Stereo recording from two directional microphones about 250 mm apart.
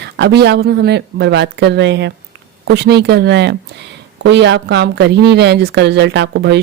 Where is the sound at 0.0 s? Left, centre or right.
Right.